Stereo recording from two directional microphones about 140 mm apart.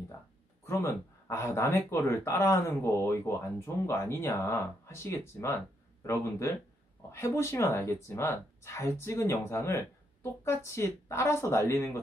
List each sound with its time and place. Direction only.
0.7 s speech: 20° left (ahead or behind)
7.1 s speech: 20° left (ahead or behind)